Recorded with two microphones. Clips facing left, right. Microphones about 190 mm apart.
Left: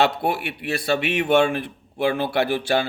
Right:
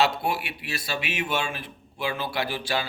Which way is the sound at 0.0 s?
55° left (ahead or behind).